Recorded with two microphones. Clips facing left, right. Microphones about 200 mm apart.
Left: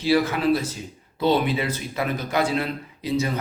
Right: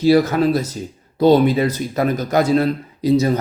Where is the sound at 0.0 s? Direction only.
40° right (ahead or behind).